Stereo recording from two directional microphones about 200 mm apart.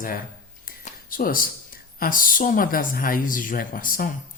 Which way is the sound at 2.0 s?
45° left (ahead or behind).